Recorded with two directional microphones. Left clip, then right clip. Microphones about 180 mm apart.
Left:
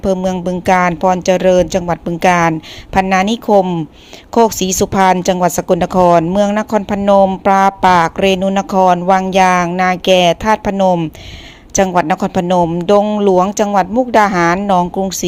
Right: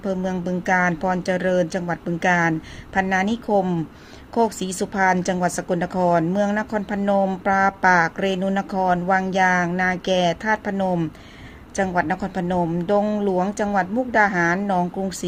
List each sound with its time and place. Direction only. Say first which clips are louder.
0.0 s a woman's voice: left 10 dB; 30° left (ahead or behind)